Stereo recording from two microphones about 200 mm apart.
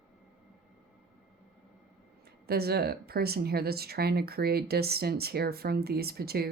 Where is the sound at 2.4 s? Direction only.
50° right (ahead or behind).